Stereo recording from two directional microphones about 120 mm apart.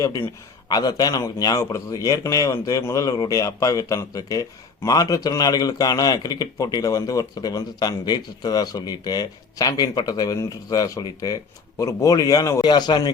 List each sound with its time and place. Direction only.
0.7 s a man's voice: 30° left (ahead or behind)